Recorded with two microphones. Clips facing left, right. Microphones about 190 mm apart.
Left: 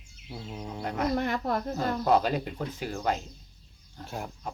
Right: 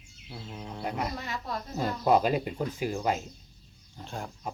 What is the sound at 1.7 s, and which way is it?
Speech, 10° right (ahead or behind).